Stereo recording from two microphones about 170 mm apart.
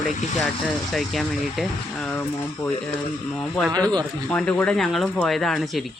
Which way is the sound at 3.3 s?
Centre (ahead or behind).